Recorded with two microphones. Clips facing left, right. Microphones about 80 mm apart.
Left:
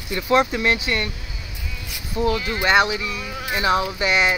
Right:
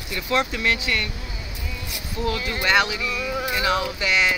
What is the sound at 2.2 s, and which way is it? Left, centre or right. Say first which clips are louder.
Speech: left 4 dB; left.